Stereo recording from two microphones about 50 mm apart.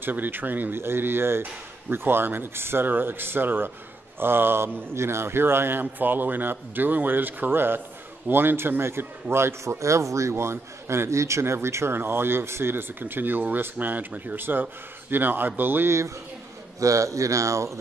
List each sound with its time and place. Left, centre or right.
0.0 s a man's voice: right
0.7 s a man's voice: right
4.9 s a man's voice: right
16.8 s speech: right